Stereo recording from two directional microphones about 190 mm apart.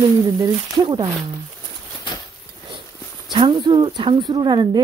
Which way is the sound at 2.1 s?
25° left (ahead or behind).